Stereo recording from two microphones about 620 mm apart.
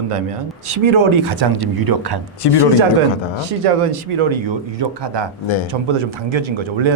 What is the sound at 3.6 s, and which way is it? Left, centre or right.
Speech, right.